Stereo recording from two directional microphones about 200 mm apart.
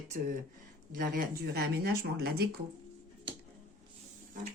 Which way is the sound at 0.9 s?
45° right (ahead or behind).